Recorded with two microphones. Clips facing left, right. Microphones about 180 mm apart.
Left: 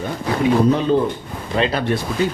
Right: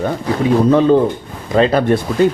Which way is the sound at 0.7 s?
55° right (ahead or behind).